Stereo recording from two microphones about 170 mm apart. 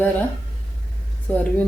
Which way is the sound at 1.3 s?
10° left (ahead or behind).